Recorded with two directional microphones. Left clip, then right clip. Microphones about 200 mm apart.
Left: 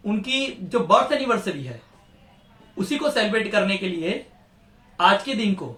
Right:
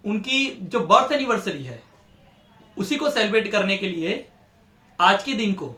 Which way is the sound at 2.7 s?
20° right (ahead or behind).